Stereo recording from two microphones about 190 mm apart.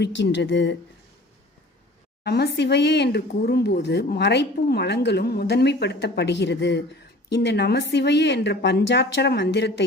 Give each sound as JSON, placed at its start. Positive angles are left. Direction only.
{"t": 0.0, "sound": "speech", "side_deg": 65}
{"t": 2.2, "sound": "a woman's voice", "side_deg": 55}